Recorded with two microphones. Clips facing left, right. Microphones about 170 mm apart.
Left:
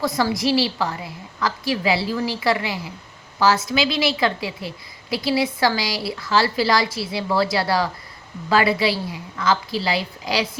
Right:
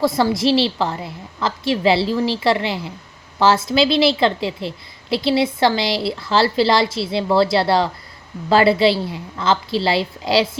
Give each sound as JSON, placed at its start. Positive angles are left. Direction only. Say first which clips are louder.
{"t": 0.0, "sound": "a woman's voice", "louder": "right 4 dB", "side_deg": -25}